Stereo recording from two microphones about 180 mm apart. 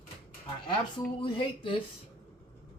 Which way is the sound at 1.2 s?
30° left (ahead or behind).